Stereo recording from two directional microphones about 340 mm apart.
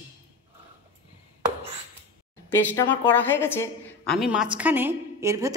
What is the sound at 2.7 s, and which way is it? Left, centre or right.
A woman's voice, centre.